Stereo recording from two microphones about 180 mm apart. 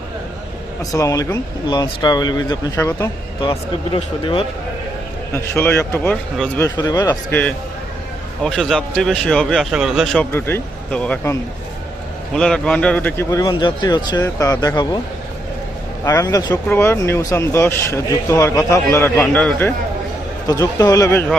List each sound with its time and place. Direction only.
0.9 s speech: 20° left (ahead or behind)
3.9 s speech: 30° left (ahead or behind)
5.3 s a man's voice: 15° left (ahead or behind)
10.3 s a man's voice: 15° left (ahead or behind)
13.5 s speech: 25° left (ahead or behind)
16.0 s speech: 20° left (ahead or behind)
20.5 s speech: 20° left (ahead or behind)